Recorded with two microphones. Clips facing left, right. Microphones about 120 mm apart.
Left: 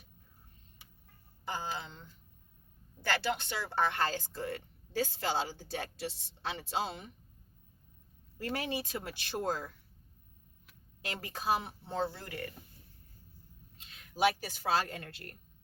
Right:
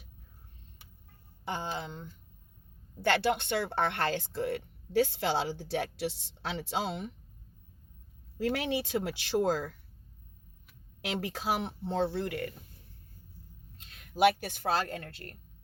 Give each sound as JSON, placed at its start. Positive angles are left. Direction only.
{"t": 1.5, "sound": "speech", "side_deg": -60}
{"t": 8.4, "sound": "speech", "side_deg": -85}
{"t": 11.0, "sound": "speech", "side_deg": -80}
{"t": 14.1, "sound": "speech", "side_deg": -60}